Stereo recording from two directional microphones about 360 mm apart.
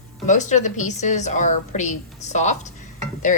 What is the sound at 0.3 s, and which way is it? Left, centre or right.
A woman's voice, centre.